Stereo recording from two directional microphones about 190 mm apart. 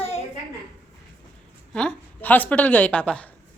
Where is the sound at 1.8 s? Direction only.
5° left (ahead or behind).